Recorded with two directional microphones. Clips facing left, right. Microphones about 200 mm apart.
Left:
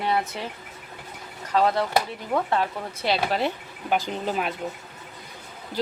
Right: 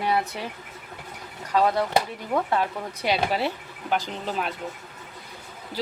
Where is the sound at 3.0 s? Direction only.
10° right (ahead or behind).